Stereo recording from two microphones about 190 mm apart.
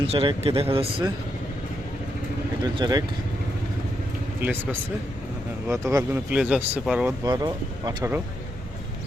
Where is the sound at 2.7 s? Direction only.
20° right (ahead or behind).